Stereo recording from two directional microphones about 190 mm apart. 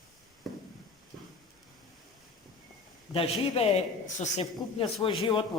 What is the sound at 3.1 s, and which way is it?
A man's voice, 30° left (ahead or behind).